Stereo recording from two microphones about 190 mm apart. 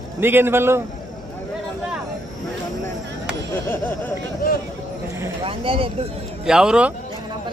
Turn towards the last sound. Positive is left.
turn(degrees=-5)  # may be behind; listen again after turning